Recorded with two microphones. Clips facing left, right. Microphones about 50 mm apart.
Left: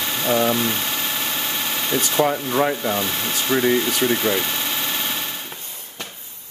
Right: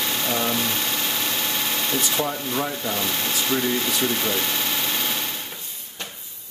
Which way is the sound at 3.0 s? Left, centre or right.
Centre.